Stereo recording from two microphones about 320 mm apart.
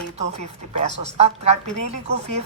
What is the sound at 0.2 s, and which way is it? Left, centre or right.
A woman's voice, right.